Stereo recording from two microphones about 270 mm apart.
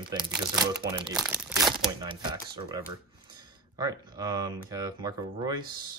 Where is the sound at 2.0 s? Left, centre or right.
Centre.